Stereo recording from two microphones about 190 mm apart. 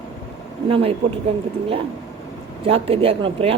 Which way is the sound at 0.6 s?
30° right (ahead or behind).